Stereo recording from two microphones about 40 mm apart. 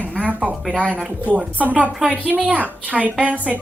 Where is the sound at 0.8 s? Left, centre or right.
Right.